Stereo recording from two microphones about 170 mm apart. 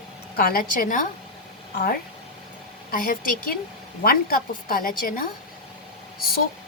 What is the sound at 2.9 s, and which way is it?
A woman's voice, 55° left (ahead or behind).